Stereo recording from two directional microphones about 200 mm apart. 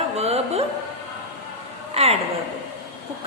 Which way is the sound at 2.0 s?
30° right (ahead or behind).